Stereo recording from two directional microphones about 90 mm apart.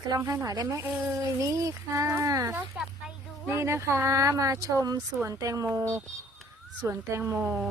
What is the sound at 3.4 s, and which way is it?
Speech, 30° right (ahead or behind).